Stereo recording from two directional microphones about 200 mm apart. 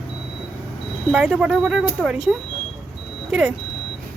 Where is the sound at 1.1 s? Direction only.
5° right (ahead or behind).